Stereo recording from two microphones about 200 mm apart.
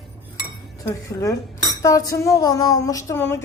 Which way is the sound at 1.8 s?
15° left (ahead or behind).